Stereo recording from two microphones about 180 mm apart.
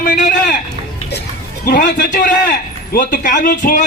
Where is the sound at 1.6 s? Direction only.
50° left (ahead or behind).